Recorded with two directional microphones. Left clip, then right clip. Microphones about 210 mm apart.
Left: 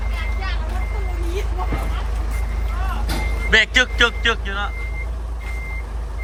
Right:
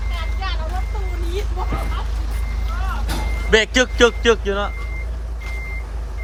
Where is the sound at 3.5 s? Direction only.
20° right (ahead or behind).